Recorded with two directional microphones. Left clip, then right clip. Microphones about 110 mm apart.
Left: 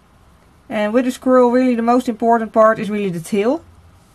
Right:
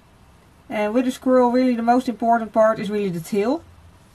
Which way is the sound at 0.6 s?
20° left (ahead or behind).